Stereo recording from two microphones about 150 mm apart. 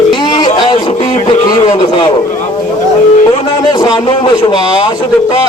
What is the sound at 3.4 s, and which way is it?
Speech, 30° left (ahead or behind).